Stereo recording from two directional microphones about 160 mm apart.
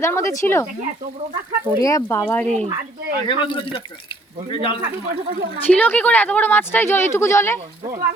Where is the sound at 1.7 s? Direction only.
20° left (ahead or behind).